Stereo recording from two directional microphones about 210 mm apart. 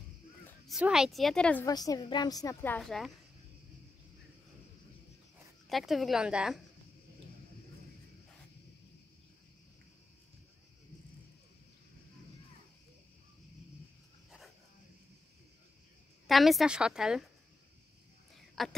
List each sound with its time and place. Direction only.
0.7 s a woman's voice: 5° right (ahead or behind)
1.7 s a woman's voice: 20° left (ahead or behind); by 3.1 s centre (ahead or behind)
5.7 s a woman's voice: centre (ahead or behind)
16.3 s a woman's voice: centre (ahead or behind)
18.6 s speech: centre (ahead or behind)